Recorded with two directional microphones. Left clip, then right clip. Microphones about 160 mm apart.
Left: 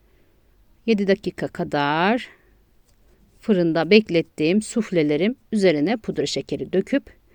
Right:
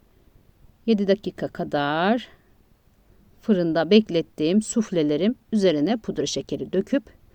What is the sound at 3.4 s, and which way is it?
Speech, 25° left (ahead or behind).